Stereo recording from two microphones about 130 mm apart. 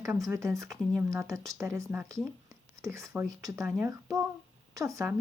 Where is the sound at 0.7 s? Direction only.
Centre (ahead or behind).